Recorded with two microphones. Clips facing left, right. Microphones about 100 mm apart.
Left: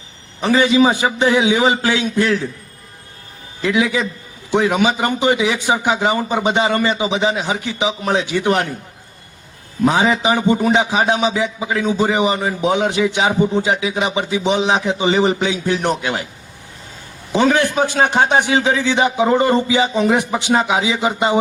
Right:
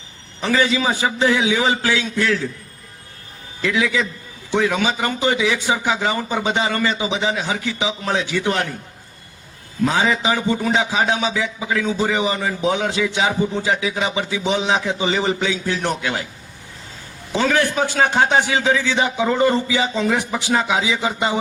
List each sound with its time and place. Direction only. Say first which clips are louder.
0.4 s a man's voice: left 5 dB; 20° left (ahead or behind)
3.6 s a man's voice: left 3 dB; 20° left (ahead or behind)
9.8 s a man's voice: left 3 dB; 20° left (ahead or behind)
17.3 s a man's voice: left 4 dB; 20° left (ahead or behind)